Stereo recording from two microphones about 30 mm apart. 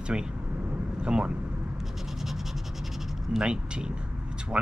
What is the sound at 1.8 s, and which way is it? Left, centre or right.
Scratch, centre.